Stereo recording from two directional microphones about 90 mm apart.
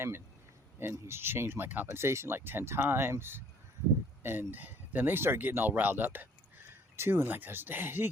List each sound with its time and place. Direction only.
0.8 s speech: 30° right (ahead or behind)